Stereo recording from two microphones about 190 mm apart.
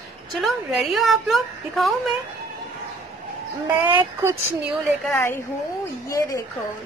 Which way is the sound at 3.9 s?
10° right (ahead or behind).